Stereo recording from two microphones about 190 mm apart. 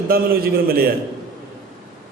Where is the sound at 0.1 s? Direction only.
50° right (ahead or behind).